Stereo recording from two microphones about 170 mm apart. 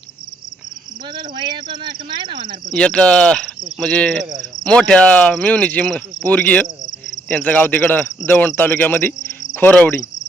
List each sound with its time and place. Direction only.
1.1 s speech: 25° right (ahead or behind)
2.7 s speech: 5° left (ahead or behind)